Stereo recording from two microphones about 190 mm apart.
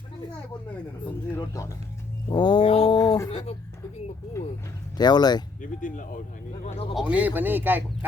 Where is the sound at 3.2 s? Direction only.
30° left (ahead or behind).